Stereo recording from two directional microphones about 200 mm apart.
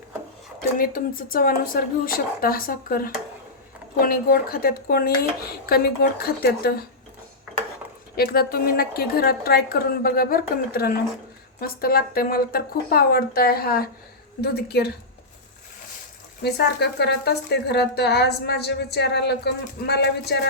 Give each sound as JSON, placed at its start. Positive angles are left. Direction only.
{"t": 0.8, "sound": "a woman's voice", "side_deg": 45}
{"t": 8.1, "sound": "a woman's voice", "side_deg": 50}
{"t": 16.4, "sound": "speech", "side_deg": 55}